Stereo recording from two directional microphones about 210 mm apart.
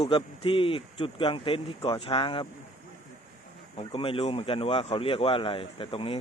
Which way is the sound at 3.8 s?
25° left (ahead or behind).